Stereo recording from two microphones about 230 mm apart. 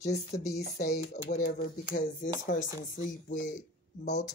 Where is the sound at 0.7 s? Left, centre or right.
Left.